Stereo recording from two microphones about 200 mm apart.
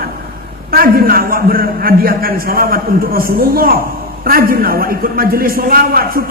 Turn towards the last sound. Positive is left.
turn(degrees=-45)  # may be behind; listen again after turning